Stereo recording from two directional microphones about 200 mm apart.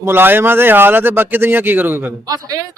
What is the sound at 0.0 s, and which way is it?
A man's voice, 10° right (ahead or behind).